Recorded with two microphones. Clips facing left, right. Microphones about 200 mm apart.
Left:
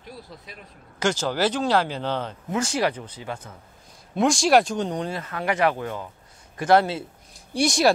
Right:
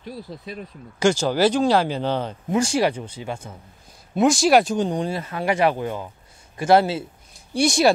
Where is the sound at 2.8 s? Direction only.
25° right (ahead or behind).